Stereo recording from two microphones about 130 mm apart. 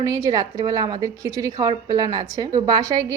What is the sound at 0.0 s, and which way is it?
A woman's voice, 25° right (ahead or behind).